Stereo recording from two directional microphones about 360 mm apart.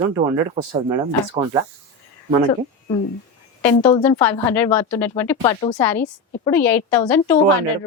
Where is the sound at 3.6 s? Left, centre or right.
Centre.